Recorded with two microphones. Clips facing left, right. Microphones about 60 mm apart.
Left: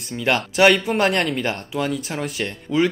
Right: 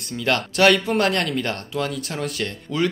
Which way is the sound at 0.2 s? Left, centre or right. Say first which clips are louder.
Left 2 dB; centre.